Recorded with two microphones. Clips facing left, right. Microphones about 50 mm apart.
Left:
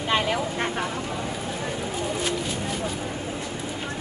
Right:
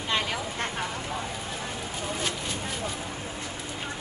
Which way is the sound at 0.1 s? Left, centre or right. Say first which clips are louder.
Left 5 dB; centre.